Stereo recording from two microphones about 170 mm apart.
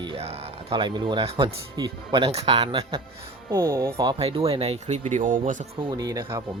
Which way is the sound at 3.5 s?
15° right (ahead or behind).